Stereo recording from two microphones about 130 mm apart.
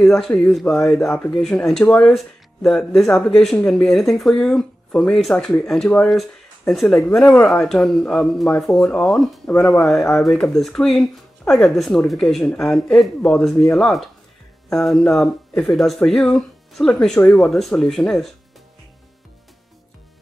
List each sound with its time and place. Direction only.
0.0 s speech: centre (ahead or behind)
1.0 s speech: 20° left (ahead or behind)
1.3 s speech: 5° left (ahead or behind)
7.4 s speech: 5° left (ahead or behind)